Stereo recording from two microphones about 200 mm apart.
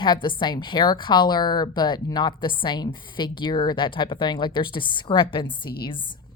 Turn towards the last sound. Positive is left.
turn(degrees=25)  # may be behind; listen again after turning